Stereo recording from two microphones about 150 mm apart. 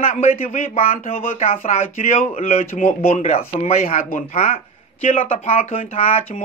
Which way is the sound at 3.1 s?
50° left (ahead or behind).